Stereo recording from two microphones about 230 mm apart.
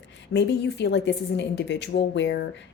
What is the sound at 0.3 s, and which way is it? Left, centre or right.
A woman's voice, left.